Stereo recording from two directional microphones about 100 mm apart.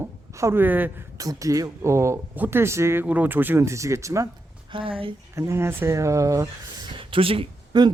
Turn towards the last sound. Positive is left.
turn(degrees=-45)  # may be behind; listen again after turning